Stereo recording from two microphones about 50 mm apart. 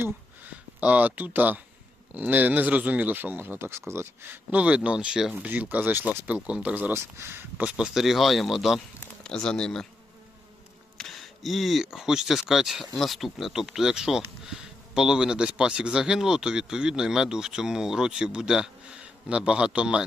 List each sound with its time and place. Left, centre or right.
0.8 s speech: right
4.6 s speech: right
5.3 s speech: right
6.2 s speech: right
6.9 s speech: right
7.6 s speech: right
7.9 s speech: centre
9.2 s speech: centre
10.9 s a sound: centre
11.9 s speech: centre